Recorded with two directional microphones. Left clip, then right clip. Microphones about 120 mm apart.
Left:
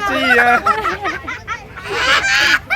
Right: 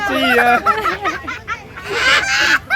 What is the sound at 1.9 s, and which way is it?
Goose, 25° left (ahead or behind).